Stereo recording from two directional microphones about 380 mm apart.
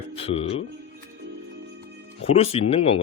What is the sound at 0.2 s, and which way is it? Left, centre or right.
Music, centre.